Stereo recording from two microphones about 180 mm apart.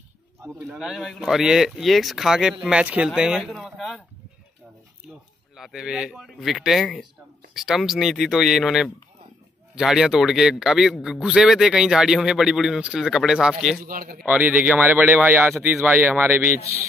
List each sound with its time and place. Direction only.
0.4 s speech: 15° right (ahead or behind)
0.7 s a man's voice: centre (ahead or behind)
5.6 s a man's voice: 5° right (ahead or behind)
13.8 s a man's voice: 55° right (ahead or behind)
14.2 s speech: 10° right (ahead or behind)